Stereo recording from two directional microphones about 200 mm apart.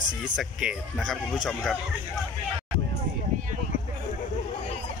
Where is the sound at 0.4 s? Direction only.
Centre (ahead or behind).